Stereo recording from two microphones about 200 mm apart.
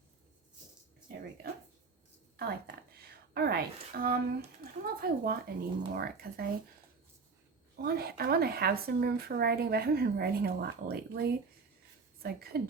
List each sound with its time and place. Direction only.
2.3 s a sound: 55° right (ahead or behind)
3.3 s speech: 50° right (ahead or behind)
7.8 s speech: 50° right (ahead or behind)